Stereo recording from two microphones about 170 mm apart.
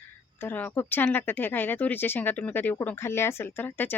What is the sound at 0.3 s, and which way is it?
Speech, 10° left (ahead or behind).